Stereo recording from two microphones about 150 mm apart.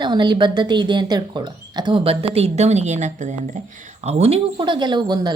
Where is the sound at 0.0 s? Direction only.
30° right (ahead or behind).